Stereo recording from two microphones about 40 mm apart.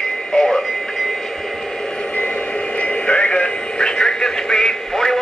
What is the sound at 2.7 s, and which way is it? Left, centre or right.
Radio, left.